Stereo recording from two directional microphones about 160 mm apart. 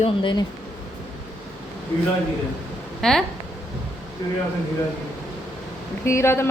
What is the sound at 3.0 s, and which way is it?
Speech, 5° left (ahead or behind).